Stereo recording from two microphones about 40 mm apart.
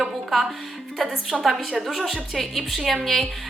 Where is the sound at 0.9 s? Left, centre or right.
Centre.